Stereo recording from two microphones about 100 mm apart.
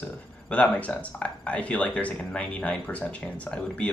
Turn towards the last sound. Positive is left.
turn(degrees=10)  # may be behind; listen again after turning